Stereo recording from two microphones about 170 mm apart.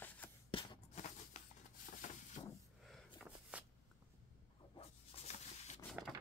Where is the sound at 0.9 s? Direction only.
45° left (ahead or behind).